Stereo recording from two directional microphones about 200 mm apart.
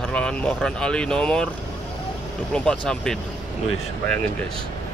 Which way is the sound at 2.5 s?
5° left (ahead or behind).